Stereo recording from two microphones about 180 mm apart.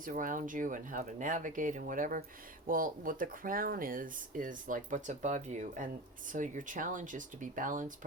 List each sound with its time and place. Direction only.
0.0 s speech: 50° right (ahead or behind)